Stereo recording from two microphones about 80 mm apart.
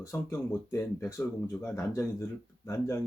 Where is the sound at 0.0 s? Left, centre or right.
Left.